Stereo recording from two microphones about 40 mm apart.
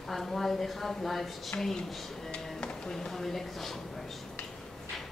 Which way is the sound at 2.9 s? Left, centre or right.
Centre.